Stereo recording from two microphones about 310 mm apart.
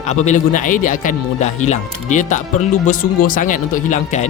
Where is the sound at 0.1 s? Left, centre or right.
Left.